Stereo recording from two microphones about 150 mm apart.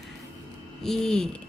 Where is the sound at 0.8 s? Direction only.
Centre (ahead or behind).